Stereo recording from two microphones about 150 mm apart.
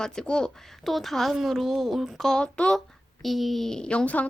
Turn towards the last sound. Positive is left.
turn(degrees=10)  # may be behind; listen again after turning